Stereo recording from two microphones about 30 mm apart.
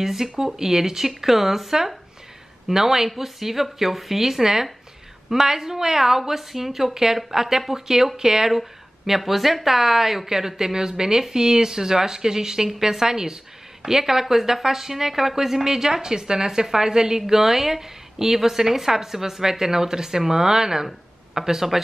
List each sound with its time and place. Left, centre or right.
0.0 s speech: centre
8.5 s speech: centre